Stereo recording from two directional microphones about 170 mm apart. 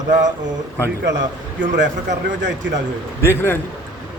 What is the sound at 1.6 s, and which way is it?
Speech, 90° right.